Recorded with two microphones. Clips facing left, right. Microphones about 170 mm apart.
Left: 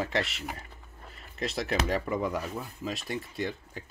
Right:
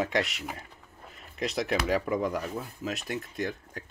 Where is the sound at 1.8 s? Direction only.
Centre (ahead or behind).